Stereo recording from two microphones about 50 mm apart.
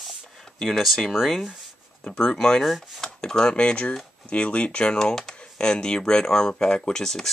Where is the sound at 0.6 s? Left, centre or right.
Centre.